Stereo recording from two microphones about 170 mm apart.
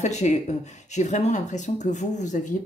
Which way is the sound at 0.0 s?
45° left (ahead or behind).